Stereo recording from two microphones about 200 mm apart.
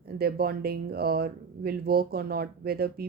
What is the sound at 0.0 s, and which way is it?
Speech, 50° right (ahead or behind).